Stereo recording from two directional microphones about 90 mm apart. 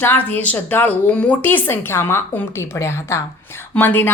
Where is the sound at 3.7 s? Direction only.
20° left (ahead or behind).